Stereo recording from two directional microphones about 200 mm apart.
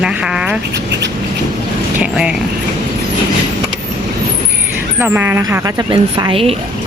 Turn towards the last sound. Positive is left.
turn(degrees=-30)  # may be behind; listen again after turning